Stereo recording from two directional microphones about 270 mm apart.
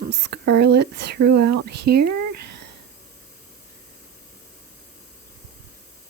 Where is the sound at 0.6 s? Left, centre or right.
Right.